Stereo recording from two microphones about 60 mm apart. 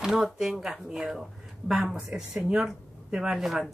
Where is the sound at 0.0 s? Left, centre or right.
Centre.